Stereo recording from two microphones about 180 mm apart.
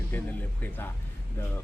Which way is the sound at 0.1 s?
10° left (ahead or behind).